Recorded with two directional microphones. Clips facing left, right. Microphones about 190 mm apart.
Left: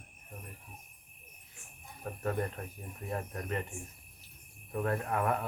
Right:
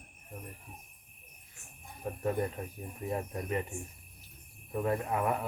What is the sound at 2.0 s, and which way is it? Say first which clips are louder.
Speech: right 2 dB; 10° right (ahead or behind).